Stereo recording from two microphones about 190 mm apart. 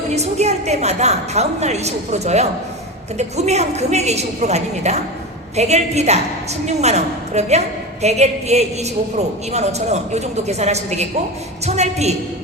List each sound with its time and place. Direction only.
0.1 s a woman's voice: 35° right (ahead or behind)